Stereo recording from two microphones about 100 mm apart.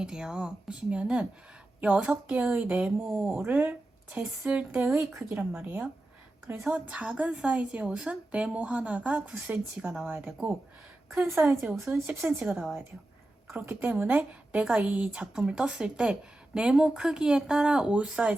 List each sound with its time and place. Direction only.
0.0 s a woman's voice: 5° right (ahead or behind)
11.8 s a woman's voice: 15° right (ahead or behind)